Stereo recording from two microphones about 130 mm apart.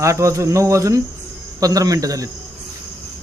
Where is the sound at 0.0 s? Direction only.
25° right (ahead or behind).